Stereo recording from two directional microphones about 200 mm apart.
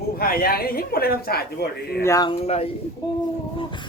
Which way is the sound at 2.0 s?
15° left (ahead or behind).